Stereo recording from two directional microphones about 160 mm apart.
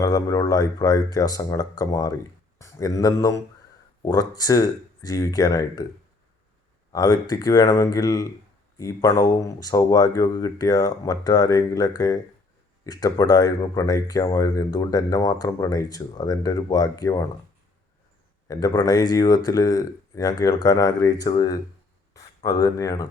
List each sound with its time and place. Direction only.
0.0 s speech: 20° left (ahead or behind)
6.9 s speech: 25° left (ahead or behind)
18.4 s speech: 25° left (ahead or behind)